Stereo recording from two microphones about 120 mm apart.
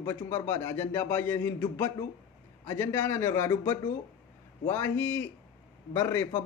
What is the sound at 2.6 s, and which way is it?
A man's voice, 20° left (ahead or behind).